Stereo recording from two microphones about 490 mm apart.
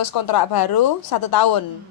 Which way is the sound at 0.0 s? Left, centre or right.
Left.